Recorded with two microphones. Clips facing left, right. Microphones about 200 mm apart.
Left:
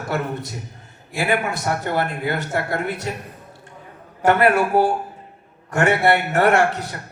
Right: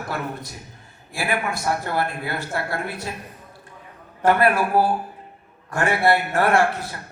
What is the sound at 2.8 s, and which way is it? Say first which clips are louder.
Speech: left 4 dB; 75° left (ahead or behind).